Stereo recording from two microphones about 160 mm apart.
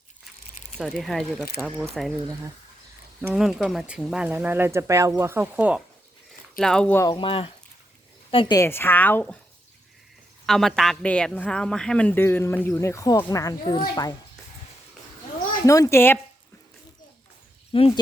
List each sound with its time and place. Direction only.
0.8 s a man's voice: centre (ahead or behind)
3.2 s speech: 5° right (ahead or behind)
6.6 s a man's voice: 5° left (ahead or behind)
7.0 s a woman's voice: 30° left (ahead or behind)
8.5 s a woman's voice: 15° left (ahead or behind)
10.4 s a man's voice: centre (ahead or behind); by 14.1 s 25° left (ahead or behind)
15.6 s speech: 20° left (ahead or behind)
17.7 s speech: 35° left (ahead or behind)